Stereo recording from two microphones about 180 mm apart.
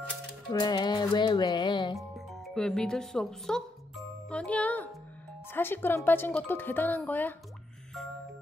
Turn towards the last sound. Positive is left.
turn(degrees=10)  # may be behind; listen again after turning